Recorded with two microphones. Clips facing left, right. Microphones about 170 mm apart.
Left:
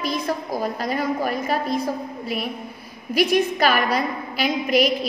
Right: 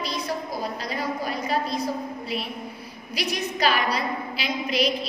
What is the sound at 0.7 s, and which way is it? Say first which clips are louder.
Speech: left 5 dB; 50° left (ahead or behind).